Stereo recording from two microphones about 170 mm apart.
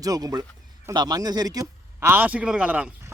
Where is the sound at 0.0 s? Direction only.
20° right (ahead or behind).